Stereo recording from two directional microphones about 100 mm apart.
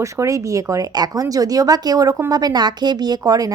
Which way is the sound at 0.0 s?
30° right (ahead or behind).